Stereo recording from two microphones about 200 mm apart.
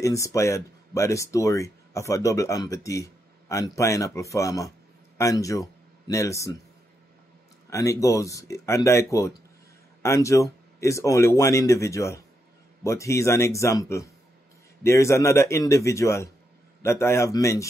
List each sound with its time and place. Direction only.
0.0 s speech: 15° left (ahead or behind)
7.7 s speech: 15° left (ahead or behind)